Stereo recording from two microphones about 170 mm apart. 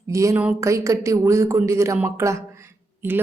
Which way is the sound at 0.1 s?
20° right (ahead or behind).